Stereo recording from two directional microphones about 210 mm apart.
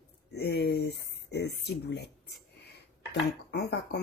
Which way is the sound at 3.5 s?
50° left (ahead or behind).